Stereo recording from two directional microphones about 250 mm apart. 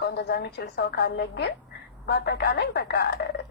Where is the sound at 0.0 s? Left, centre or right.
Left.